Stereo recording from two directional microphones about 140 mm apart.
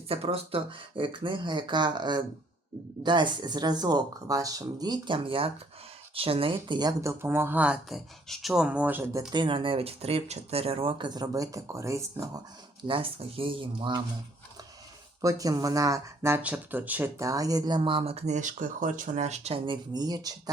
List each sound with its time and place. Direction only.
0.1 s speech: 45° right (ahead or behind); by 9.2 s 15° right (ahead or behind)
9.3 s speech: 35° right (ahead or behind)
12.9 s speech: 40° right (ahead or behind)
15.2 s speech: 25° right (ahead or behind)